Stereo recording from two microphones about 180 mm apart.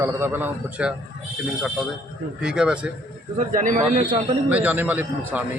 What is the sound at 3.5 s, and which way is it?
Speech, 45° right (ahead or behind).